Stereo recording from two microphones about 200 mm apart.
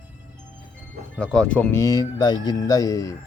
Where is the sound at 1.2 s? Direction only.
5° left (ahead or behind).